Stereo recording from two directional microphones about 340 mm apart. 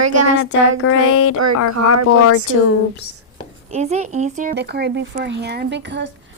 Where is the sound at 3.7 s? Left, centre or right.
Centre.